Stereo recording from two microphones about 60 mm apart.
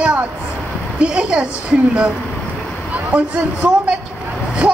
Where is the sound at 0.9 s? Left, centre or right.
Centre.